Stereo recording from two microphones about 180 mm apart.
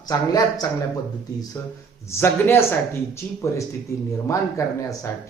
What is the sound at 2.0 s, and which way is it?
A man's voice, 15° left (ahead or behind).